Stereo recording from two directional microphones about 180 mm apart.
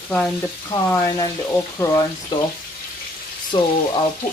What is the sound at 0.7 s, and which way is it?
Speech, 20° left (ahead or behind).